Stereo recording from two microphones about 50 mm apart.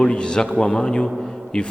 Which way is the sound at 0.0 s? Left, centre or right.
Centre.